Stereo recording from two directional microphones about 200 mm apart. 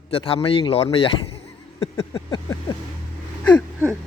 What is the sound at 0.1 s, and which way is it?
Speech, 30° left (ahead or behind).